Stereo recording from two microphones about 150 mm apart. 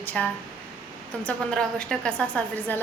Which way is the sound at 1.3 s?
5° left (ahead or behind).